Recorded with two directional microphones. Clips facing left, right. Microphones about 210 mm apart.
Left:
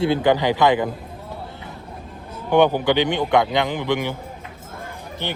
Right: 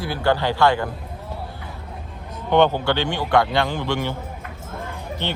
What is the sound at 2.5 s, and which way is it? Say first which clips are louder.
Speech: left 1 dB; 15° left (ahead or behind).